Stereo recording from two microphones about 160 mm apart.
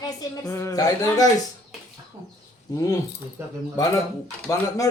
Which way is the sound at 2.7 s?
20° left (ahead or behind).